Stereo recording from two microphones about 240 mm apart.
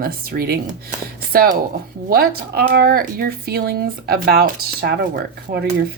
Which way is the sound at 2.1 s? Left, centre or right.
Right.